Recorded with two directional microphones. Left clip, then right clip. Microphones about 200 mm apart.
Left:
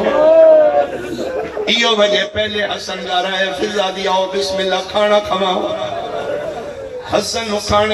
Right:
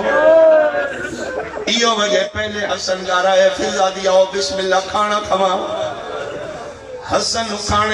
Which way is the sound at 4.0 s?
50° left (ahead or behind).